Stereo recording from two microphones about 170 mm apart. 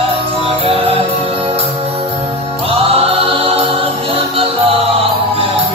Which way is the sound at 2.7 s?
35° right (ahead or behind).